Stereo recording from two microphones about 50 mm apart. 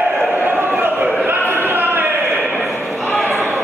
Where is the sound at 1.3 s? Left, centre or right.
Right.